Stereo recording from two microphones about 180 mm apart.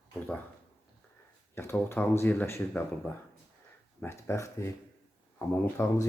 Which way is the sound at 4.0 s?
10° left (ahead or behind).